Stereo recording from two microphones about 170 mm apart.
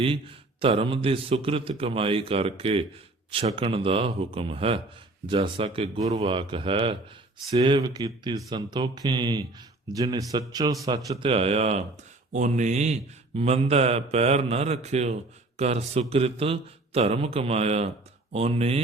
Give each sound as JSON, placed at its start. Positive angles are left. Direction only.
{"t": 0.6, "sound": "speech", "side_deg": -30}